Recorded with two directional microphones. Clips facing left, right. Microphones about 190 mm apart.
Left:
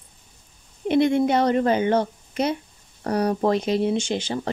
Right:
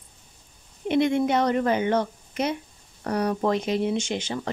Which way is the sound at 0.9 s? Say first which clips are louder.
Left 3 dB; 35° left (ahead or behind).